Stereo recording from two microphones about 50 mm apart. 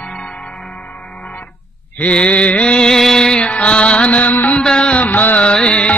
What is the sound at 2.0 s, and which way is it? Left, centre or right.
Mantra, left.